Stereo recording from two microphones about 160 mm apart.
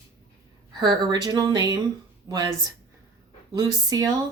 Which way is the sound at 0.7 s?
25° right (ahead or behind).